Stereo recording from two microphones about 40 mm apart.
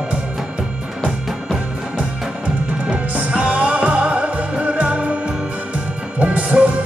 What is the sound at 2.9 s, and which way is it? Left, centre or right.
Music, right.